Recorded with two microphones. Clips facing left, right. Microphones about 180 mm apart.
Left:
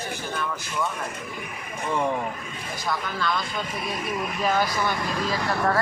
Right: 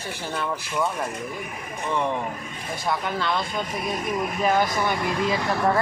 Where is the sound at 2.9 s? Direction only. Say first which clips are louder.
Right 2 dB; 25° right (ahead or behind).